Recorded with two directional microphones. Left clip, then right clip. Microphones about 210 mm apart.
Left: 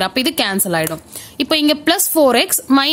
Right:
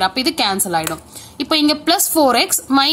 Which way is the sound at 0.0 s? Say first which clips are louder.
Even; 45° left (ahead or behind).